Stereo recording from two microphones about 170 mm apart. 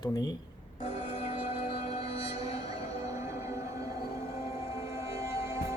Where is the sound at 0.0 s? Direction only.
20° left (ahead or behind).